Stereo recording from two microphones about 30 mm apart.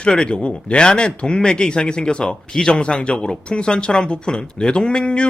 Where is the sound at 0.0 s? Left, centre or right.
Left.